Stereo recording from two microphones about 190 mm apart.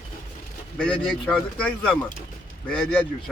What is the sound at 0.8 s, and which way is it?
Speech, 5° left (ahead or behind).